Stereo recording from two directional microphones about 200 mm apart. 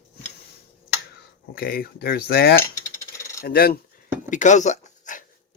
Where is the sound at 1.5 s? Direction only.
45° left (ahead or behind).